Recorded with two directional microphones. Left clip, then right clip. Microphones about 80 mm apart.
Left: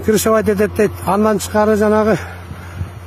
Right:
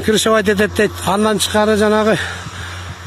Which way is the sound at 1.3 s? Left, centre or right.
Right.